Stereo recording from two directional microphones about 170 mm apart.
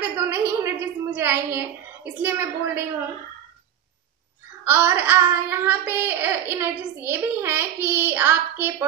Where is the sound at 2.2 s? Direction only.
10° right (ahead or behind).